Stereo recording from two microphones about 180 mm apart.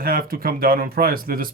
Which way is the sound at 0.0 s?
55° right (ahead or behind).